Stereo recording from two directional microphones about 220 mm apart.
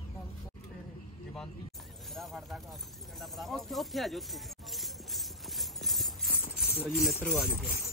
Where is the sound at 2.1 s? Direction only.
Centre (ahead or behind).